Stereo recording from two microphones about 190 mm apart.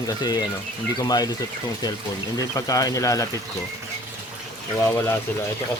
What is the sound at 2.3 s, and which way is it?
Speech, 20° left (ahead or behind).